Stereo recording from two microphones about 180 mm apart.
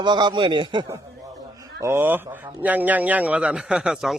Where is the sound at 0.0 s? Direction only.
25° right (ahead or behind).